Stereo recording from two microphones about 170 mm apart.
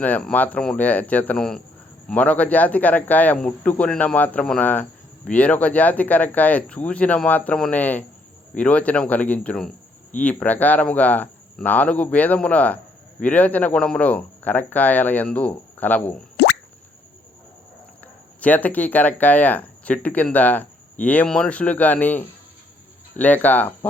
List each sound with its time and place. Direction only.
0.0 s speech: 10° left (ahead or behind)
18.3 s speech: 10° left (ahead or behind)